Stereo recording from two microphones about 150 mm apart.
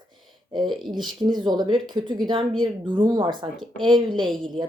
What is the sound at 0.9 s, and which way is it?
Speech, 30° right (ahead or behind).